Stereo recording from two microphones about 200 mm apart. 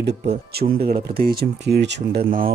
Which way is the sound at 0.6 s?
50° right (ahead or behind).